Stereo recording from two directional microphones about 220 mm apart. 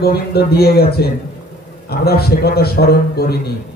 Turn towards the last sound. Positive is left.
turn(degrees=45)  # may be behind; listen again after turning